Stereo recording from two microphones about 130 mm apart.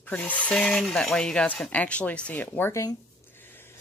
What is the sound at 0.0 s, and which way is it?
Speech, 10° left (ahead or behind).